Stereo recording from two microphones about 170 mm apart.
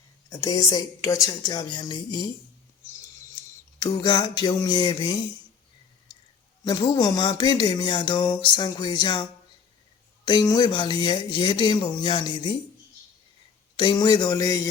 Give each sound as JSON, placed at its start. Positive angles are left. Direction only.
{"t": 0.3, "sound": "speech", "side_deg": 20}
{"t": 3.8, "sound": "speech", "side_deg": 25}
{"t": 6.7, "sound": "speech", "side_deg": 25}
{"t": 10.2, "sound": "speech", "side_deg": 25}
{"t": 13.7, "sound": "speech", "side_deg": 25}